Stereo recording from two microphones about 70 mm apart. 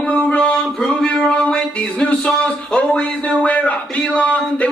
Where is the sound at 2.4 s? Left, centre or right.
Centre.